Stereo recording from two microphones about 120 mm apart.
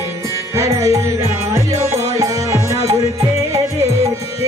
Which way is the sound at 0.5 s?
25° right (ahead or behind).